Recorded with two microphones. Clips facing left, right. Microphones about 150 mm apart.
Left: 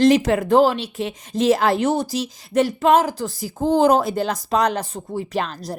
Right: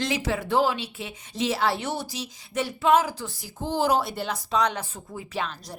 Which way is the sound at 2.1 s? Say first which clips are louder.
Left 11 dB; 90° left.